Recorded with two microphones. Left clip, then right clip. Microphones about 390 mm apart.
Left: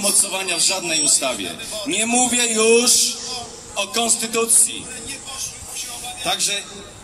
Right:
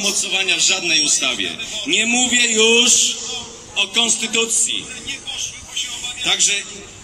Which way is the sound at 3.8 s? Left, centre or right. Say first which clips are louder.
Right 4 dB; left.